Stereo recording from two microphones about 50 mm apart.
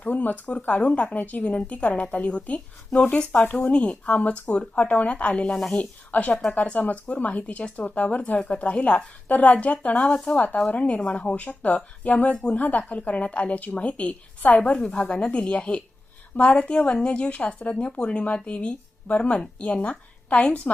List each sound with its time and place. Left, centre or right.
0.0 s a woman's voice: left
3.4 s speech: left
3.7 s a woman's voice: left
10.2 s speech: centre
10.7 s a woman's voice: left
14.6 s a woman's voice: centre